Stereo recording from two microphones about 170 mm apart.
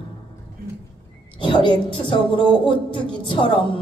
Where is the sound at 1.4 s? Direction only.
30° left (ahead or behind).